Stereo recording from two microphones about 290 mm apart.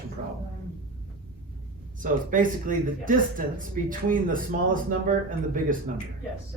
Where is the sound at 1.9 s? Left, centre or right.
Right.